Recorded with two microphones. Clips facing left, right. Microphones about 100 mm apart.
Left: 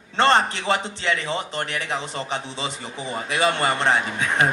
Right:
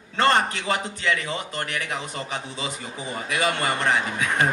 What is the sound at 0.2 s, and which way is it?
A man's voice, 30° left (ahead or behind).